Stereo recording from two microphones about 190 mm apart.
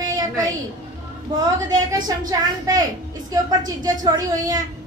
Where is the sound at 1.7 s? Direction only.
20° right (ahead or behind).